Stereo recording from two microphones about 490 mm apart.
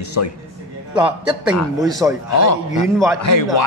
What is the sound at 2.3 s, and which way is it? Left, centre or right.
A man's voice, left.